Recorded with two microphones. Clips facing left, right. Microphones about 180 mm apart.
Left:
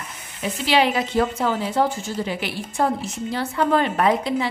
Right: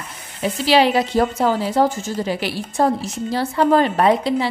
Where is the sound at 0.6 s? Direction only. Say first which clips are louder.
Right 4 dB; 35° right (ahead or behind).